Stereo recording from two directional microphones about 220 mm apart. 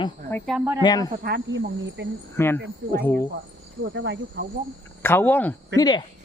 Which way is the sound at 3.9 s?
55° right (ahead or behind).